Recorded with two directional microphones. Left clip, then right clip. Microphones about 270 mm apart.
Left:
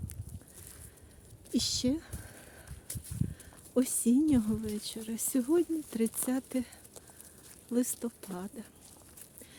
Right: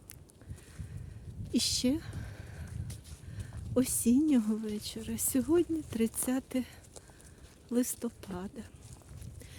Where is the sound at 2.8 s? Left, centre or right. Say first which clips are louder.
Left 3 dB; centre.